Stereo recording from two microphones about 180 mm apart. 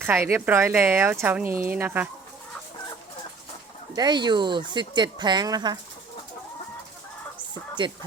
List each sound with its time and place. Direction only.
0.0 s speech: 15° right (ahead or behind)
3.9 s speech: 25° right (ahead or behind)
7.8 s speech: 25° right (ahead or behind)